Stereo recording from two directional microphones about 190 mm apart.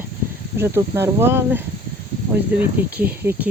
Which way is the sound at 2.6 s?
10° right (ahead or behind).